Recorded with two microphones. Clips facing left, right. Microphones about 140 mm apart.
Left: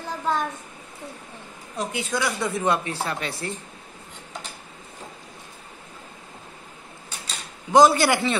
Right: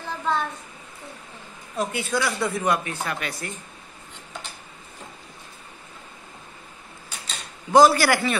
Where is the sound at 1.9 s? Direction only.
20° left (ahead or behind).